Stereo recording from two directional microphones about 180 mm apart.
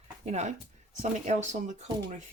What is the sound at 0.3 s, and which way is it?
Speech, 40° right (ahead or behind).